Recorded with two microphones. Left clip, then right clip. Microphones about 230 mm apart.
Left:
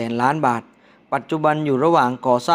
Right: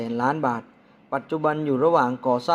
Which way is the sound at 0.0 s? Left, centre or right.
Left.